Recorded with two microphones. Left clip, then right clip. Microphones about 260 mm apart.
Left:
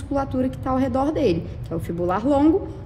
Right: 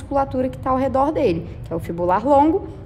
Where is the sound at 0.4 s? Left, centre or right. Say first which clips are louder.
Right 3 dB; right.